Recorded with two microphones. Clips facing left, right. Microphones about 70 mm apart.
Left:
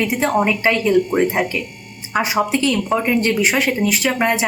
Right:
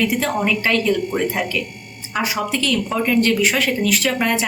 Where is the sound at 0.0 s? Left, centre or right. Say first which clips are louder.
Left 2 dB; left.